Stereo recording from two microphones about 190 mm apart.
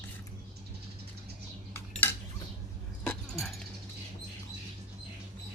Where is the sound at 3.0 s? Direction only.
Centre (ahead or behind).